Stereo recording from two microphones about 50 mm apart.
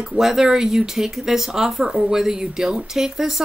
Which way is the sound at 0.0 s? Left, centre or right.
Centre.